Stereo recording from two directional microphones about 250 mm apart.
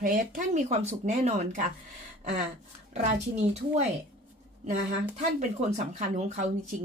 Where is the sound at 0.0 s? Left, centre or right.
Right.